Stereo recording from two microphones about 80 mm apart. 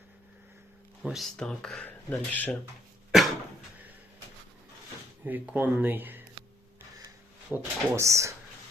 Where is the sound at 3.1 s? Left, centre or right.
Centre.